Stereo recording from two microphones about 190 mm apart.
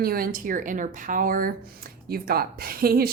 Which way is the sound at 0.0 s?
50° right (ahead or behind).